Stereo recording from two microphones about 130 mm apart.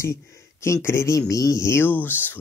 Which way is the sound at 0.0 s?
25° left (ahead or behind).